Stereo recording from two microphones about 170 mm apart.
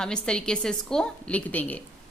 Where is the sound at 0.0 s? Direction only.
5° left (ahead or behind).